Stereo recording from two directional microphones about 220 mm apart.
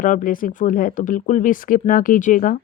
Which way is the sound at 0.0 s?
35° left (ahead or behind).